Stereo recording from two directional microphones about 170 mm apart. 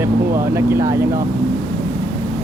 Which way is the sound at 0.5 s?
15° right (ahead or behind).